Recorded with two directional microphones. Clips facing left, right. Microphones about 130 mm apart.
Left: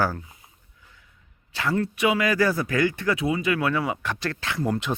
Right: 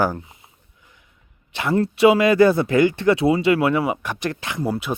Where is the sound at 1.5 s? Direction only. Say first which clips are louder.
Right 5 dB; 20° right (ahead or behind).